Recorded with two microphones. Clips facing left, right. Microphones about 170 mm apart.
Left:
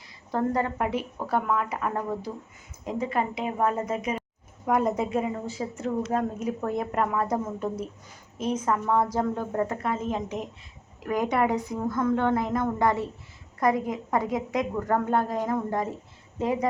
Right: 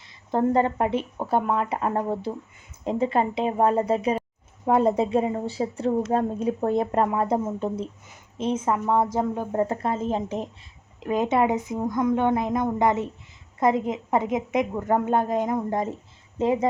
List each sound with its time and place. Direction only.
0.3 s a woman's voice: 25° right (ahead or behind)
8.7 s speech: 15° right (ahead or behind)
9.6 s a woman's voice: 30° right (ahead or behind)